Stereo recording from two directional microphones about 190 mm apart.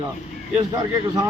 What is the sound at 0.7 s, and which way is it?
Speech, 20° right (ahead or behind).